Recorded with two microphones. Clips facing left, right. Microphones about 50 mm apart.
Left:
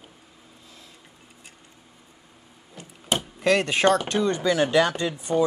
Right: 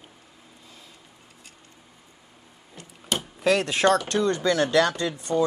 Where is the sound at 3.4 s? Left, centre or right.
Centre.